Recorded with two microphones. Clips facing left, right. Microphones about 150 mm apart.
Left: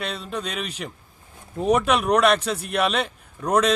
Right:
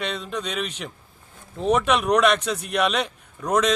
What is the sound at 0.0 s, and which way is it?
A man's voice, 5° left (ahead or behind).